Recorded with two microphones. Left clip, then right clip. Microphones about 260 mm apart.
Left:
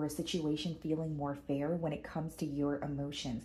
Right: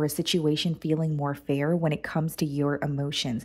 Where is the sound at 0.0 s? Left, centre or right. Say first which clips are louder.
Right 11 dB; right.